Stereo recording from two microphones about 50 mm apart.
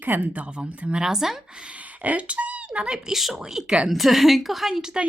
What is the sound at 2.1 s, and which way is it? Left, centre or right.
Speech, right.